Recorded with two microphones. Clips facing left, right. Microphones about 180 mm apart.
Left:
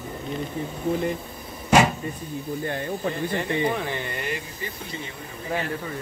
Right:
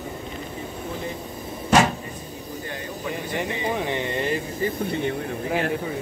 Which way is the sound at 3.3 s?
20° right (ahead or behind).